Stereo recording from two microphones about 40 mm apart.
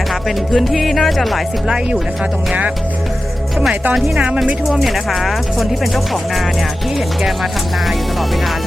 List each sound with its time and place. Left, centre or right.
0.6 s speech: centre
4.8 s speech: centre